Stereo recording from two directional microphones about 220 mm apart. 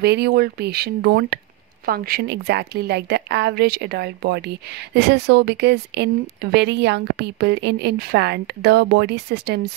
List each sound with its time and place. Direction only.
0.0 s a woman's voice: 50° right (ahead or behind)